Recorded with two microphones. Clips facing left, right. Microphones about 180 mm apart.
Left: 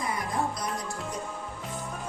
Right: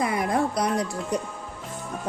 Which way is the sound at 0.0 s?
70° right (ahead or behind).